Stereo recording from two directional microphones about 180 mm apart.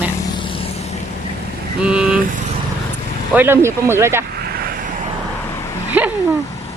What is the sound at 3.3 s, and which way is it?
Speech, 10° right (ahead or behind).